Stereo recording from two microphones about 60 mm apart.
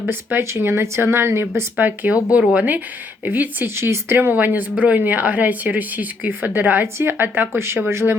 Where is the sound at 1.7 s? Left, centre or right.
Right.